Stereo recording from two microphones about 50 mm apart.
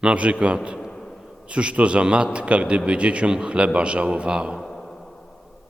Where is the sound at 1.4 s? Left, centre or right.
Right.